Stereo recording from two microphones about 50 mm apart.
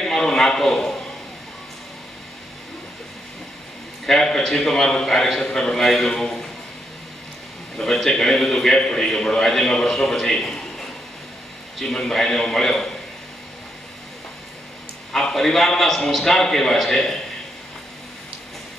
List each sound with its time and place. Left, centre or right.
0.0 s a sound: centre
4.0 s a man's voice: centre
7.7 s a man's voice: centre
15.1 s a man's voice: centre